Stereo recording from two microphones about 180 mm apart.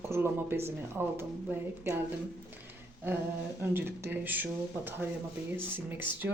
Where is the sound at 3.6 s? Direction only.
10° right (ahead or behind).